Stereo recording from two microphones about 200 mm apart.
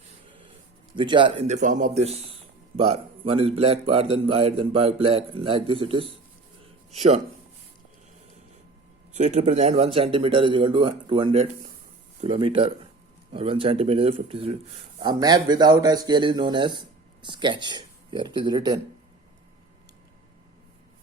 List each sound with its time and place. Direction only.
0.9 s speech: 25° right (ahead or behind)
6.6 s a sound: 35° right (ahead or behind)
9.1 s speech: 35° right (ahead or behind)